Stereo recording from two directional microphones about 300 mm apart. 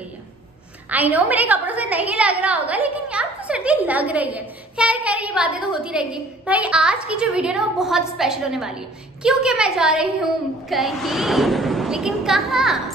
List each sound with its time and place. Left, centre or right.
0.8 s a woman's voice: centre